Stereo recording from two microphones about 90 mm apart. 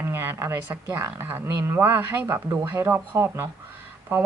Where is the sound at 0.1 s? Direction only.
25° right (ahead or behind).